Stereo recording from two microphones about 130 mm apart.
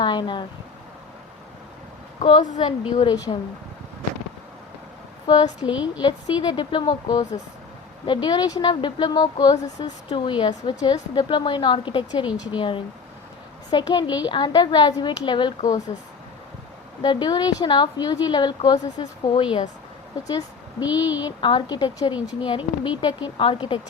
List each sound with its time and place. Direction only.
0.0 s speech: 35° left (ahead or behind)
3.0 s a woman's voice: 35° left (ahead or behind)
5.2 s a woman's voice: 35° left (ahead or behind)
5.6 s a woman's voice: 10° right (ahead or behind)
6.0 s a woman's voice: 35° left (ahead or behind)
12.3 s a woman's voice: 10° right (ahead or behind)
12.5 s a woman's voice: 40° left (ahead or behind)
17.0 s a woman's voice: 35° left (ahead or behind)
20.2 s a woman's voice: 30° left (ahead or behind)